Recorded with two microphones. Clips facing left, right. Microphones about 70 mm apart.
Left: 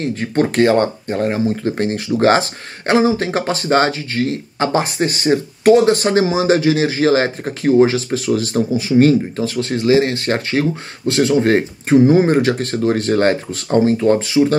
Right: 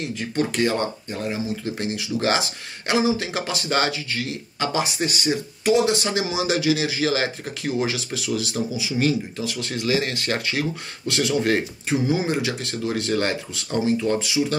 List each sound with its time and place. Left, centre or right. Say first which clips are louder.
0.0 s speech: left 7 dB; left